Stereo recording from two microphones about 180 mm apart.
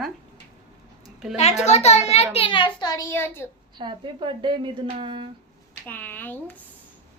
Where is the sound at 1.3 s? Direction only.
40° left (ahead or behind); by 3.5 s 15° left (ahead or behind).